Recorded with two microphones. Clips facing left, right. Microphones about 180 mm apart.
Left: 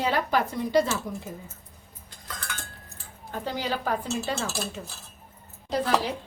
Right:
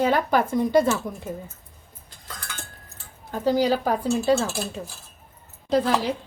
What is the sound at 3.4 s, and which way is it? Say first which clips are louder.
Speech: right 10 dB; 40° right (ahead or behind).